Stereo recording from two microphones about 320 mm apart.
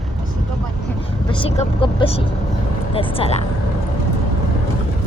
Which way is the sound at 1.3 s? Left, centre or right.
Centre.